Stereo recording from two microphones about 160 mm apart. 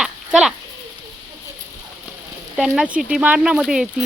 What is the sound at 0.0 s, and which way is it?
Children playing, 5° right (ahead or behind).